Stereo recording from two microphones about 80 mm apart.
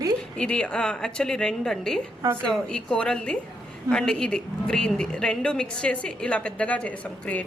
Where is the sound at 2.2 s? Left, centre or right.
Right.